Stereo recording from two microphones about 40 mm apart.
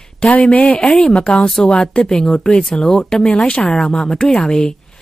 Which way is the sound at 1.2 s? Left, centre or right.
Left.